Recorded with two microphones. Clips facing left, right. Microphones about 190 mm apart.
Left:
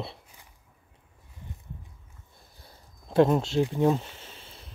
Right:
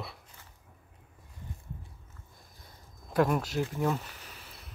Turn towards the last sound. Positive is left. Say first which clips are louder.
# left 2 dB
turn(degrees=25)  # may be behind; listen again after turning